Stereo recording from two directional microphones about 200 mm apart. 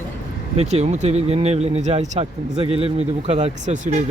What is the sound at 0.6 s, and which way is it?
Speech, 30° right (ahead or behind).